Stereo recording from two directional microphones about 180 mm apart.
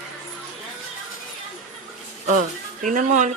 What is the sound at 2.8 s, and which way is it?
Speech, 45° right (ahead or behind).